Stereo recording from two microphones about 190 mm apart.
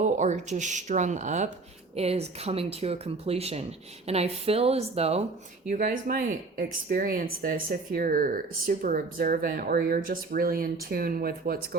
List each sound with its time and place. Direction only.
0.0 s speech: 40° right (ahead or behind)
5.6 s speech: 45° right (ahead or behind)